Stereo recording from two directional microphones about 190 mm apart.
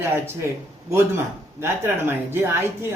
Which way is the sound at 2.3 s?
10° right (ahead or behind).